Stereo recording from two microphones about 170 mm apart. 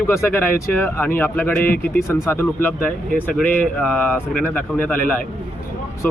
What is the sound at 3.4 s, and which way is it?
Mantra, 50° left (ahead or behind).